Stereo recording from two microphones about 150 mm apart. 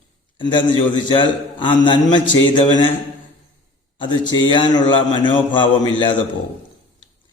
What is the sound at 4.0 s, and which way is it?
A man's voice, 30° left (ahead or behind).